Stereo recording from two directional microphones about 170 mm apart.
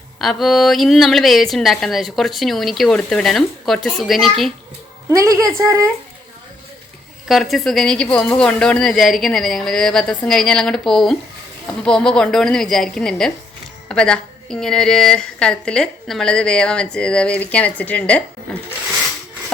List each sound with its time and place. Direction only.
0.2 s a woman's voice: centre (ahead or behind)
5.1 s a woman's voice: 20° right (ahead or behind)
7.3 s a woman's voice: centre (ahead or behind)
18.5 s filing: 5° left (ahead or behind)